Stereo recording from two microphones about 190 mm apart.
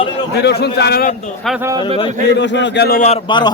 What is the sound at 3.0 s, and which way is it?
Speech, 30° left (ahead or behind).